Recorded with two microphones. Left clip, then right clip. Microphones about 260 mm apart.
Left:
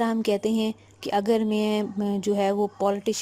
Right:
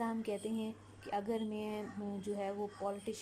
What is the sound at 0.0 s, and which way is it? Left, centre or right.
Speech, left.